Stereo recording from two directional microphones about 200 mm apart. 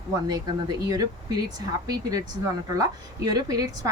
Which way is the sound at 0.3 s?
20° right (ahead or behind).